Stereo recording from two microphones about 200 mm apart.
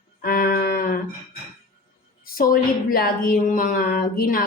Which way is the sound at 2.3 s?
45° left (ahead or behind).